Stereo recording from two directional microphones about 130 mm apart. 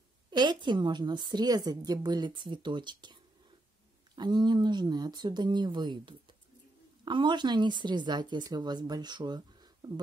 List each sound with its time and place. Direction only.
0.3 s a woman's voice: 35° right (ahead or behind)